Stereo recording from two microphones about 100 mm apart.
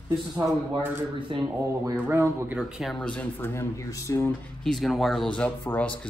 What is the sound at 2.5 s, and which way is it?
Speech, centre (ahead or behind).